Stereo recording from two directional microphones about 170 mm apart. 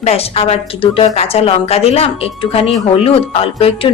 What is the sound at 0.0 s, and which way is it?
A woman's voice, 35° left (ahead or behind).